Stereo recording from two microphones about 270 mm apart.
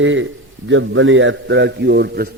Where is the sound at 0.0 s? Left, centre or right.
Right.